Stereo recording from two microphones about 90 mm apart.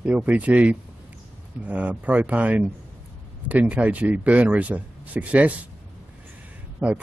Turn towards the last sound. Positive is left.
turn(degrees=-15)  # may be behind; listen again after turning